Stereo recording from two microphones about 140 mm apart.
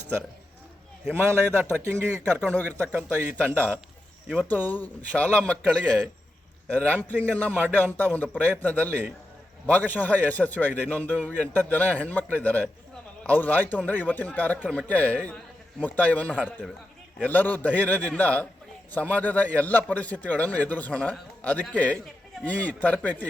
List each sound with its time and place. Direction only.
1.1 s a man's voice: 20° right (ahead or behind)
2.4 s a man's voice: 10° left (ahead or behind)
4.4 s a man's voice: 10° left (ahead or behind)
16.4 s speech: 5° right (ahead or behind)
17.2 s a man's voice: 10° left (ahead or behind)